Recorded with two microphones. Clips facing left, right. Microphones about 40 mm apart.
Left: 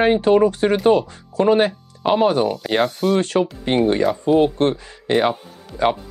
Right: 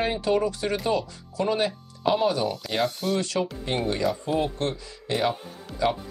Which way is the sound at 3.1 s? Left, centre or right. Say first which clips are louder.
Left 8 dB; left.